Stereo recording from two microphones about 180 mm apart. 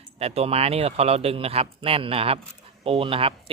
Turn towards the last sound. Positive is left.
turn(degrees=-30)  # may be behind; listen again after turning